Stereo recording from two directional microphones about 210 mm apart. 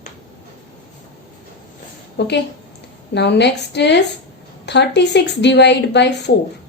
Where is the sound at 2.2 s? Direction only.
55° left (ahead or behind).